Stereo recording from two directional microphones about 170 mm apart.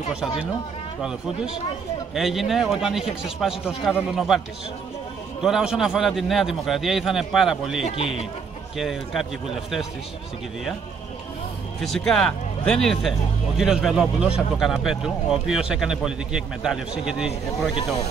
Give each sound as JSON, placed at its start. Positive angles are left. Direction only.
{"t": 1.0, "sound": "speech", "side_deg": -5}
{"t": 5.4, "sound": "speech", "side_deg": 0}
{"t": 7.8, "sound": "a man's voice", "side_deg": 35}
{"t": 8.7, "sound": "speech", "side_deg": 0}
{"t": 11.8, "sound": "speech", "side_deg": 0}